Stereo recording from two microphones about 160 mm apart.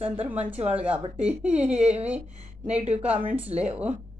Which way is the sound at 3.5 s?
40° right (ahead or behind).